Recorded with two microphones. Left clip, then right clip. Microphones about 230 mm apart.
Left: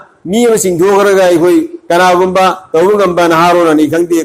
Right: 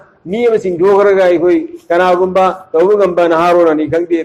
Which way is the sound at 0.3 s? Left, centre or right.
Left.